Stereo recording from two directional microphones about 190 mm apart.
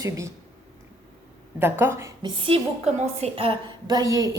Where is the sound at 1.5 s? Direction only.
10° right (ahead or behind).